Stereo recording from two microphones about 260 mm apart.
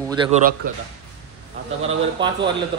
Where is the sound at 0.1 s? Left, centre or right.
Centre.